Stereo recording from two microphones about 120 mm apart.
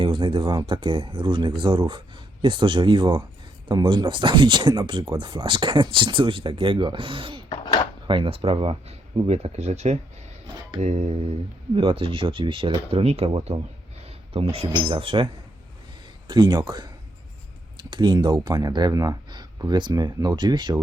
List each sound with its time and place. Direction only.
0.0 s speech: 45° right (ahead or behind)
7.5 s dishes: 35° left (ahead or behind)
8.0 s speech: 45° right (ahead or behind); by 10.0 s 65° right (ahead or behind)
10.8 s a sound: 70° right (ahead or behind)
11.7 s speech: 50° right (ahead or behind)
16.2 s speech: 35° right (ahead or behind)